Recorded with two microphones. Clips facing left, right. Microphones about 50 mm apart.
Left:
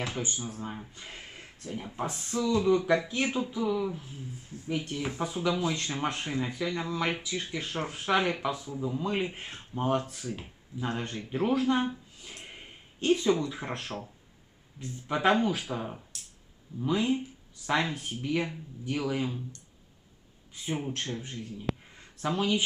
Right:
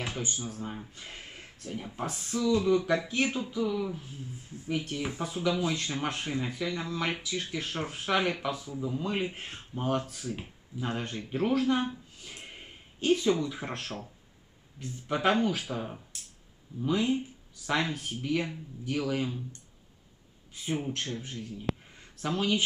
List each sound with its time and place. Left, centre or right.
0.2 s speech: centre
0.6 s speech: centre
9.5 s speech: centre
20.6 s speech: centre